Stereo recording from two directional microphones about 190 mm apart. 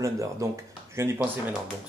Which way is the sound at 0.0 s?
15° right (ahead or behind).